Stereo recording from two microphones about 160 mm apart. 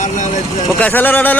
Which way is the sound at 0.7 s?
10° left (ahead or behind).